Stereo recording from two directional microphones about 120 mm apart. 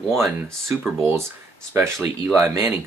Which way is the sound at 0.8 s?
20° right (ahead or behind).